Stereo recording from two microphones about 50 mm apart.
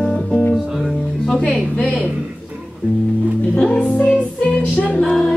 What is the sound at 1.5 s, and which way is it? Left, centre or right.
Speech, centre.